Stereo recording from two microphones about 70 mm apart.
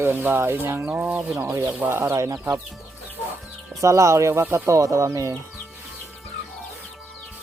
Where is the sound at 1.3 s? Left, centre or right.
Right.